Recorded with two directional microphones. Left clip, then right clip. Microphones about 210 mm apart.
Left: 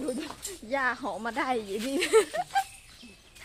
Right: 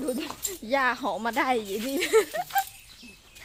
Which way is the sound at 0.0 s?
30° right (ahead or behind).